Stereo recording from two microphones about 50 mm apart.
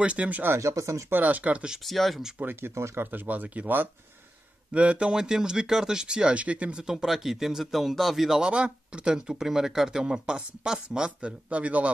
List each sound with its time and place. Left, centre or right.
0.0 s speech: right
0.6 s speech: right
1.2 s speech: right
1.9 s speech: centre
2.7 s speech: right
3.0 s speech: right
4.7 s speech: right
6.8 s speech: centre
8.5 s speech: right